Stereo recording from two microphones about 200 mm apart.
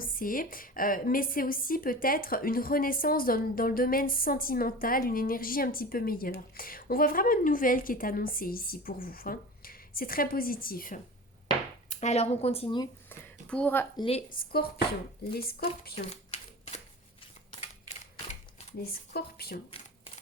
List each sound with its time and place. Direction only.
0.0 s a woman's voice: 45° left (ahead or behind)
11.9 s speech: 35° left (ahead or behind)
13.1 s a sound: 5° left (ahead or behind)
13.9 s a woman's voice: 30° left (ahead or behind)
14.3 s a woman's voice: 50° left (ahead or behind)
16.0 s typewriter: 30° left (ahead or behind)
18.8 s a woman's voice: 50° left (ahead or behind)